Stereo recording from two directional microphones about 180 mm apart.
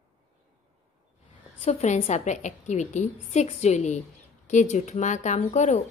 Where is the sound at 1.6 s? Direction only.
35° left (ahead or behind).